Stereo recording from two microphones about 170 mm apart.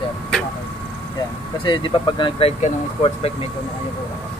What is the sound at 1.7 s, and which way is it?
Speech, 30° left (ahead or behind).